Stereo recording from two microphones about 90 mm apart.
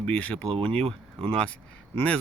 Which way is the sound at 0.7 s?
90° right.